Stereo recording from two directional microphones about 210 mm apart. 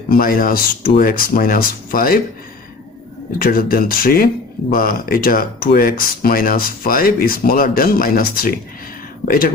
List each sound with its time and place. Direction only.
0.1 s speech: 45° left (ahead or behind)
3.3 s speech: 45° left (ahead or behind)